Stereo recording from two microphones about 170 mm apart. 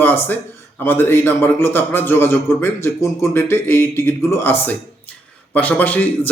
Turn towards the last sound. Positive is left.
turn(degrees=10)  # may be behind; listen again after turning